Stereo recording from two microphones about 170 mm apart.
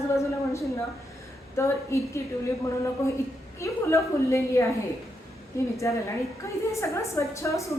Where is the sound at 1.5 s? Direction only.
15° left (ahead or behind).